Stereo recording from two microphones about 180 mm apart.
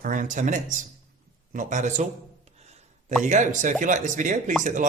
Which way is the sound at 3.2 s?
45° right (ahead or behind).